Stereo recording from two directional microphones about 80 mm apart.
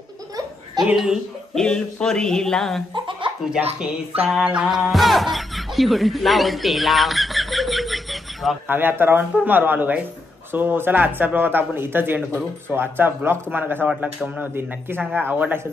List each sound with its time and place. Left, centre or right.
0.9 s speech: centre
1.5 s speech: centre
2.9 s a sound: right
3.4 s speech: centre
8.6 s speech: right